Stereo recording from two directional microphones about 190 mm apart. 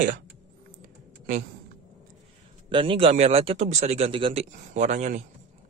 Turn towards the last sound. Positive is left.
turn(degrees=-35)  # may be behind; listen again after turning